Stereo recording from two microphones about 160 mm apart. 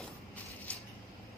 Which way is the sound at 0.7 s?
10° left (ahead or behind).